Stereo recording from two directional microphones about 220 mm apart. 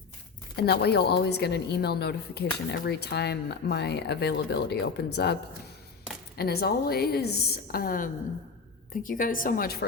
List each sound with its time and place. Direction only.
0.5 s a woman's voice: 45° left (ahead or behind)